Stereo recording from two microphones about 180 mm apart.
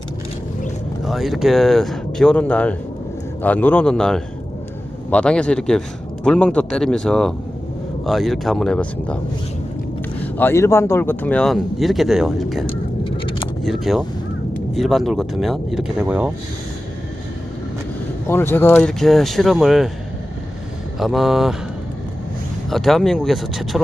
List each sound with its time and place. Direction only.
1.0 s speech: centre (ahead or behind)
10.3 s speech: 15° left (ahead or behind)
12.6 s vehicle: 30° left (ahead or behind)
13.6 s speech: centre (ahead or behind)
18.3 s speech: 10° left (ahead or behind)
21.0 s speech: centre (ahead or behind)
22.7 s speech: centre (ahead or behind)